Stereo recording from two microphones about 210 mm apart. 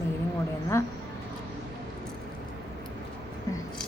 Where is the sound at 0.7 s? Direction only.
15° left (ahead or behind).